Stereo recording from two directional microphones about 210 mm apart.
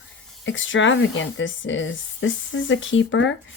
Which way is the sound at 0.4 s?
65° left (ahead or behind).